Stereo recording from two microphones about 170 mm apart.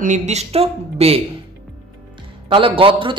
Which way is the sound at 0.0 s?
45° right (ahead or behind).